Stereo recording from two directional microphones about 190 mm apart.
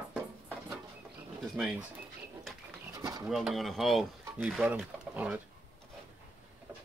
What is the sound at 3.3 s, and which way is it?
Speech, centre (ahead or behind).